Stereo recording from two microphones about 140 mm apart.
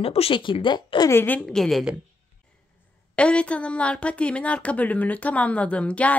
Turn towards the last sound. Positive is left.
turn(degrees=10)  # may be behind; listen again after turning